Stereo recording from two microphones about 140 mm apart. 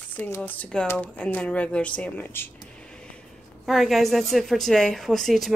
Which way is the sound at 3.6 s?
Centre (ahead or behind).